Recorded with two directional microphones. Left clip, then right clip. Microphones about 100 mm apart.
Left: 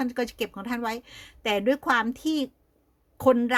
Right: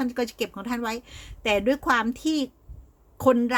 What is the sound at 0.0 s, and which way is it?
A woman's voice, 30° left (ahead or behind).